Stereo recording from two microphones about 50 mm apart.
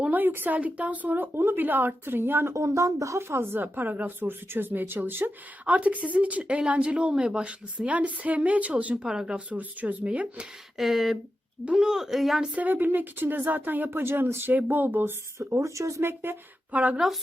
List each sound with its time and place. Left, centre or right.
0.1 s speech: right
1.4 s speech: right
1.6 s speech: right
2.5 s speech: right
3.2 s speech: right
5.6 s speech: right
9.0 s a woman's voice: centre
9.5 s speech: right
10.8 s a woman's voice: centre
12.4 s speech: right
12.7 s speech: right
15.4 s speech: right
16.0 s speech: right
16.7 s speech: right